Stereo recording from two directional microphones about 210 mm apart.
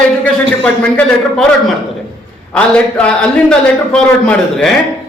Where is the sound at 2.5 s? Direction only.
5° left (ahead or behind).